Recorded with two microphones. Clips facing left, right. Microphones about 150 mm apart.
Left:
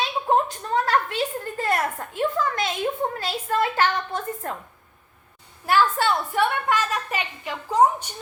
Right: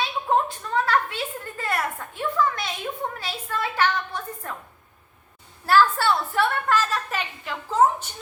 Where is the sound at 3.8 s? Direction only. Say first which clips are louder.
Left 1 dB; 45° left (ahead or behind).